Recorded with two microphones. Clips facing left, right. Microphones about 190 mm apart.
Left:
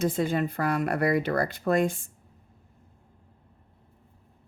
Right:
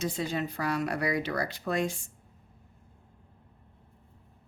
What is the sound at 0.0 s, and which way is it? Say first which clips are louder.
Speech: left 6 dB; 55° left (ahead or behind).